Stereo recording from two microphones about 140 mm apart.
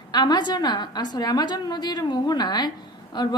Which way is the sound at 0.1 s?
30° left (ahead or behind).